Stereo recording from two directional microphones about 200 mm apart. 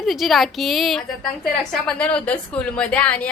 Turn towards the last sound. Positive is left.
turn(degrees=5)  # may be behind; listen again after turning